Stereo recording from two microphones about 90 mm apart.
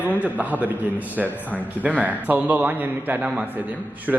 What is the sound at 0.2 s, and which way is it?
A man's voice, 15° right (ahead or behind).